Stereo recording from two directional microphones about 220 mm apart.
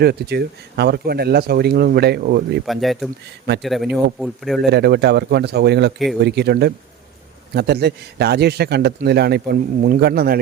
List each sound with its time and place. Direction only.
0.0 s a man's voice: 45° right (ahead or behind)
2.6 s speech: centre (ahead or behind)
4.7 s a man's voice: 50° right (ahead or behind)